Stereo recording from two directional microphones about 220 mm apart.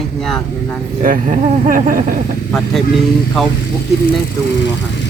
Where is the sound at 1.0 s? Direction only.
40° right (ahead or behind).